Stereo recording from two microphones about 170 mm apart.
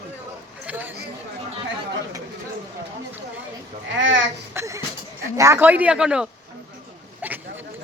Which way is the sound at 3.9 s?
90° right.